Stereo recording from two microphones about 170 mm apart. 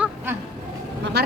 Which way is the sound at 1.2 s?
75° right (ahead or behind).